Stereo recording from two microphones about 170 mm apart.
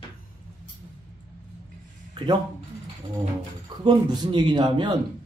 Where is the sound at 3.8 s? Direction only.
25° right (ahead or behind).